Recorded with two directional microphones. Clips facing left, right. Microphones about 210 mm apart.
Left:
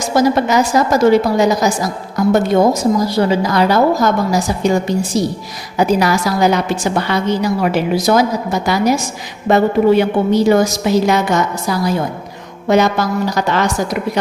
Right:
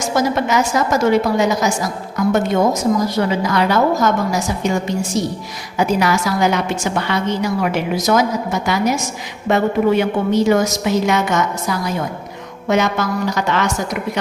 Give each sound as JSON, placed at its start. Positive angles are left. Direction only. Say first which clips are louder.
{"t": 0.1, "sound": "a woman's voice", "louder": "left 5 dB", "side_deg": 35}